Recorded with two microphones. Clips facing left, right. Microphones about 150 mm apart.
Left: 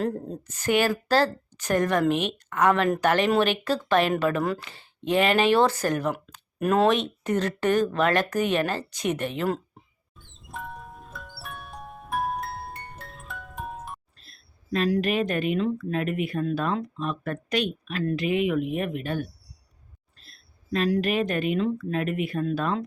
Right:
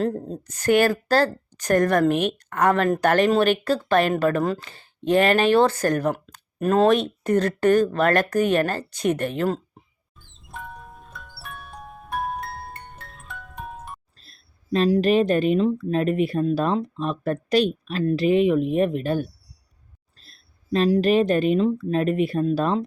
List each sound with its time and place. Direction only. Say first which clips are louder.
0.0 s speech: right 3 dB; 35° right (ahead or behind)
10.2 s music: even; centre (ahead or behind)
14.2 s a sound: even; 35° right (ahead or behind)
14.8 s speech: right 7 dB; 30° right (ahead or behind)